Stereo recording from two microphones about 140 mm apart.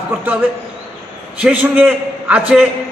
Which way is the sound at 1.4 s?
10° right (ahead or behind).